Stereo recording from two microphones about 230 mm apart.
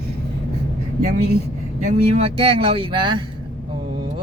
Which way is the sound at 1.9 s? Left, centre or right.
Right.